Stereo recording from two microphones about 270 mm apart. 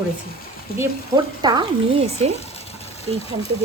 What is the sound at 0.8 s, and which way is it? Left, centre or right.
Speech, centre.